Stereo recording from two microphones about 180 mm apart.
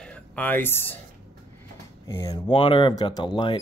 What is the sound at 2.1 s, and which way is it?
Speech, 25° left (ahead or behind).